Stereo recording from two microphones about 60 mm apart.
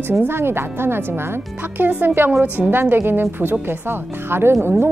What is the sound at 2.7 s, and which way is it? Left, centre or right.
Speech, right.